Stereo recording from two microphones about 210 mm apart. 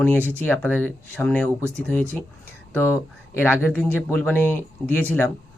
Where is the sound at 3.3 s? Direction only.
10° left (ahead or behind).